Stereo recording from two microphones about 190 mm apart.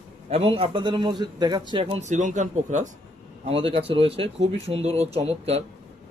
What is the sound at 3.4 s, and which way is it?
Speech, 30° right (ahead or behind).